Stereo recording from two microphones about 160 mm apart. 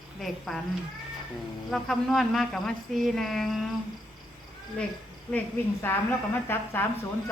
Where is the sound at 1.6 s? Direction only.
5° left (ahead or behind).